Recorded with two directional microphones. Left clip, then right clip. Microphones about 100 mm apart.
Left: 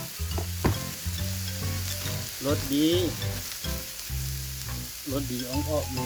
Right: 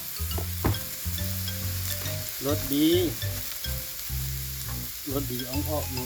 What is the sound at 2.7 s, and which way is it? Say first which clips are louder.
Frying: right 2 dB; 35° right (ahead or behind).